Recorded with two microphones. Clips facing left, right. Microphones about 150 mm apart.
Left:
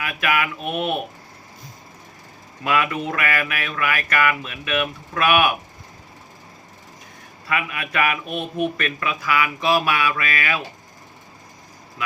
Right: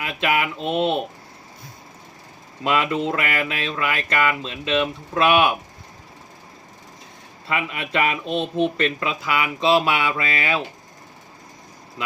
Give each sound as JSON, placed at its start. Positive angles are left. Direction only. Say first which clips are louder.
{"t": 0.0, "sound": "speech", "louder": "right 1 dB", "side_deg": -25}
{"t": 2.6, "sound": "speech", "louder": "right 1 dB", "side_deg": -25}
{"t": 7.4, "sound": "speech", "louder": "even", "side_deg": -25}
{"t": 12.0, "sound": "speech", "louder": "left 1 dB", "side_deg": -25}